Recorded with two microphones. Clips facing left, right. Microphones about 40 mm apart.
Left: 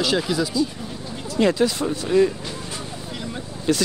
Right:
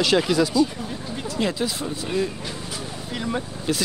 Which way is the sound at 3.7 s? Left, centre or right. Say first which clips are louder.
Left 4 dB; centre.